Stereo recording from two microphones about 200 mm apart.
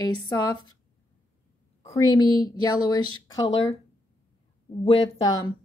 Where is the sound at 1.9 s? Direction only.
20° left (ahead or behind).